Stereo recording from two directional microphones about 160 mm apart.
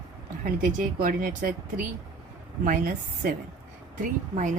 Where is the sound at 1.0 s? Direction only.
55° right (ahead or behind).